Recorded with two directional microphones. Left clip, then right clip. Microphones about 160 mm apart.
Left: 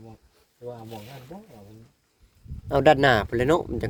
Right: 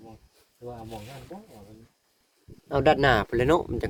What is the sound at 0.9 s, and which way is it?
Speech, 20° left (ahead or behind).